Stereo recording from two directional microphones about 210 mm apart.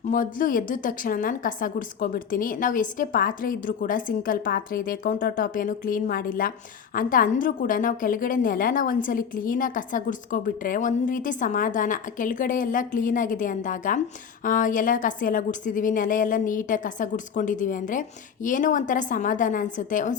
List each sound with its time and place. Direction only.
0.1 s a woman's voice: 40° left (ahead or behind)